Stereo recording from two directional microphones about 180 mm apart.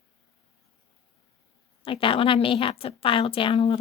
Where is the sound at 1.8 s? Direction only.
30° left (ahead or behind).